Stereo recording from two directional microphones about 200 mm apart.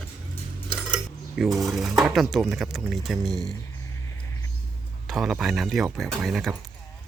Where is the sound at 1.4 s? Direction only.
15° right (ahead or behind).